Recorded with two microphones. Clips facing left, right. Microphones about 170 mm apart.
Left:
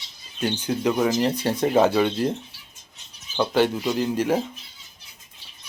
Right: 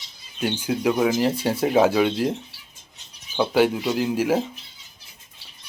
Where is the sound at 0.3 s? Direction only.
5° right (ahead or behind).